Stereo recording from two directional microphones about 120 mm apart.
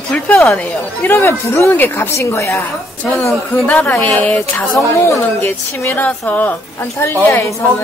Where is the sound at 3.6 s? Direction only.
10° left (ahead or behind).